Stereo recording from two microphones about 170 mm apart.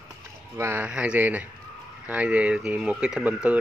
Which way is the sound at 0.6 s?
10° right (ahead or behind).